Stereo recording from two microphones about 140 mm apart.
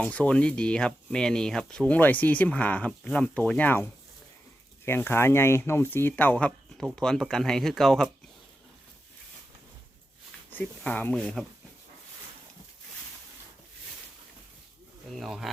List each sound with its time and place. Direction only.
0.0 s speech: 10° left (ahead or behind)
4.9 s speech: 15° left (ahead or behind)
10.5 s speech: 10° left (ahead or behind)
15.2 s speech: centre (ahead or behind)